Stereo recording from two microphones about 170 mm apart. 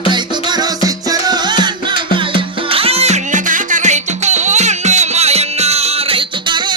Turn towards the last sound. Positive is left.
turn(degrees=-25)  # may be behind; listen again after turning